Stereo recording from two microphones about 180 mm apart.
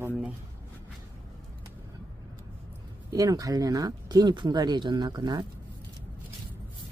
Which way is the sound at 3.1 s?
20° right (ahead or behind).